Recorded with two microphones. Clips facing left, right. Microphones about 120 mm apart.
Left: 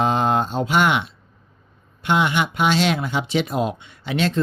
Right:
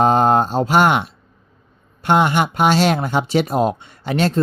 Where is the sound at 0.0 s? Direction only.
45° right (ahead or behind).